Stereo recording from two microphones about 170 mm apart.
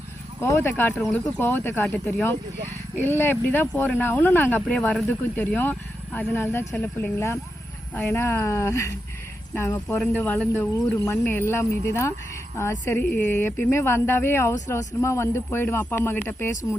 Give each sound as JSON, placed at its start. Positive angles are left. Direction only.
{"t": 0.3, "sound": "speech", "side_deg": 15}